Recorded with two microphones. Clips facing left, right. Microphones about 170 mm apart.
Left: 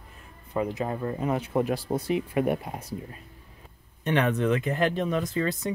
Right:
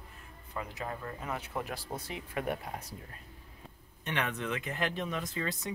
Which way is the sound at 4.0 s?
40° left (ahead or behind).